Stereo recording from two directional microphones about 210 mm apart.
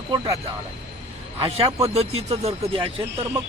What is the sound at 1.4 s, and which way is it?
Speech, 25° right (ahead or behind).